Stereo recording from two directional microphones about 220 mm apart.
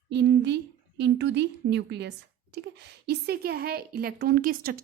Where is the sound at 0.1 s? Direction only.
50° right (ahead or behind).